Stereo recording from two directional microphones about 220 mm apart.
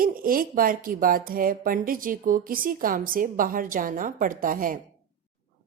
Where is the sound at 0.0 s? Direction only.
40° right (ahead or behind).